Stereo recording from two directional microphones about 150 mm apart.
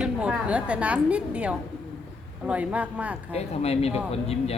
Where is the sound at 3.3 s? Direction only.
45° left (ahead or behind).